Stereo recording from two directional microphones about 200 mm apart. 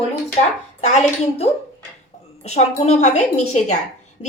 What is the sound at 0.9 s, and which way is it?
A woman's voice, 35° left (ahead or behind).